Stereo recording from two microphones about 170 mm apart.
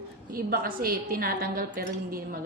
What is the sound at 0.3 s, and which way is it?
A woman's voice, 55° right (ahead or behind).